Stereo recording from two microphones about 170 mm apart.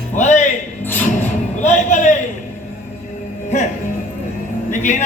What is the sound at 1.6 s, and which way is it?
Speech, 45° left (ahead or behind).